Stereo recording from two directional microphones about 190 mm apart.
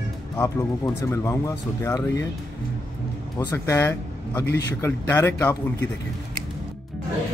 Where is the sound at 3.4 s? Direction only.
15° left (ahead or behind).